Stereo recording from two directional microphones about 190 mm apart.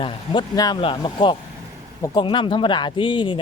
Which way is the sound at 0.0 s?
20° left (ahead or behind).